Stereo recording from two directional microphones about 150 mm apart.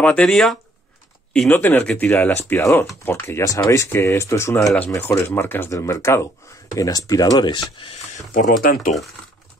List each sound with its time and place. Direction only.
0.0 s speech: 10° left (ahead or behind); by 7.6 s 30° left (ahead or behind)
7.7 s speech: 40° left (ahead or behind)
8.3 s speech: 70° left (ahead or behind)